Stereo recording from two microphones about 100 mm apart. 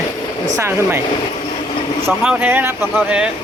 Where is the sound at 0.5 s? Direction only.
25° right (ahead or behind).